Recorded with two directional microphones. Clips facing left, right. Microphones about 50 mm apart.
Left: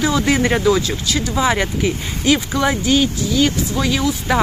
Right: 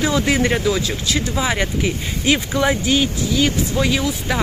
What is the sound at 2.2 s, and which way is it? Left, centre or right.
Speech, centre.